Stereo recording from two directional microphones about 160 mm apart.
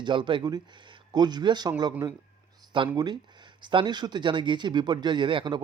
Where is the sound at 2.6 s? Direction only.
25° right (ahead or behind).